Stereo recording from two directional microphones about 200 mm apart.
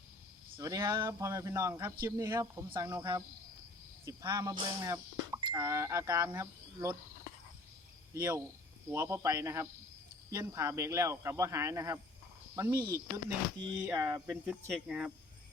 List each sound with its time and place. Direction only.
0.5 s speech: 15° right (ahead or behind)
8.1 s speech: 10° right (ahead or behind)